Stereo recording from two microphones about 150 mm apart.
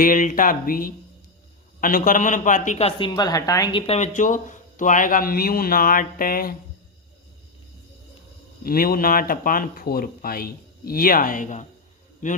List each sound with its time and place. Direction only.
0.0 s a man's voice: 65° left (ahead or behind)
3.0 s a woman's voice: 30° left (ahead or behind)
3.8 s speech: 45° left (ahead or behind); by 6.6 s 75° left (ahead or behind)
8.6 s speech: 80° left; by 11.6 s 60° left (ahead or behind)